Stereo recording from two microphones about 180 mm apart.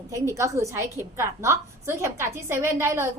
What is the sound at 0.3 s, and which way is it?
A woman's voice, 15° right (ahead or behind).